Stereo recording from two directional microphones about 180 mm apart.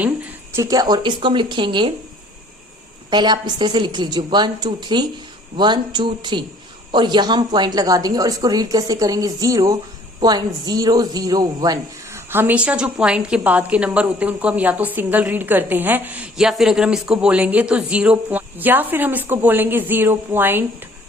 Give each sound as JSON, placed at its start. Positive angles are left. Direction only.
{"t": 0.5, "sound": "speech", "side_deg": -20}
{"t": 3.1, "sound": "a man's voice", "side_deg": -25}